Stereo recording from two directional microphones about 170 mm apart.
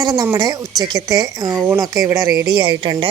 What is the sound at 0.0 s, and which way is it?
A woman's voice, 20° right (ahead or behind).